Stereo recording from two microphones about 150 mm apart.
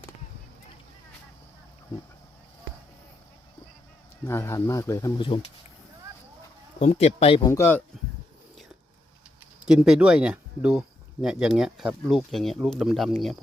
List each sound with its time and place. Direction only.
4.3 s speech: 15° left (ahead or behind)
5.2 s speech: 40° left (ahead or behind)
6.7 s speech: 45° left (ahead or behind)
7.4 s speech: 15° left (ahead or behind)
9.6 s speech: 5° right (ahead or behind)